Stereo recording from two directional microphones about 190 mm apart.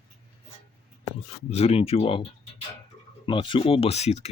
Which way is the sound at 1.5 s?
35° left (ahead or behind).